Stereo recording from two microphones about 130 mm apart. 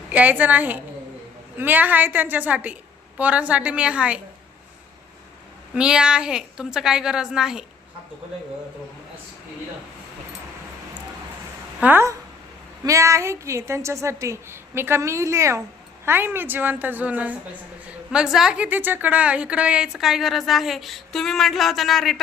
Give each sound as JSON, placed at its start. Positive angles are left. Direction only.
{"t": 0.1, "sound": "a woman's voice", "side_deg": -10}
{"t": 5.7, "sound": "a woman's voice", "side_deg": -5}
{"t": 11.8, "sound": "a woman's voice", "side_deg": -15}